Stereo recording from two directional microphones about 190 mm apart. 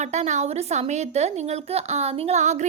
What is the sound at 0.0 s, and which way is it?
A woman's voice, 35° right (ahead or behind).